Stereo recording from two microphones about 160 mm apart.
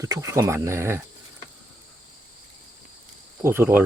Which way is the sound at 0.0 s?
20° right (ahead or behind).